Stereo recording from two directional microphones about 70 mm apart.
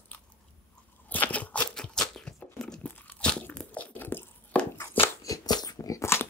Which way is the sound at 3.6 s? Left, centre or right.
Left.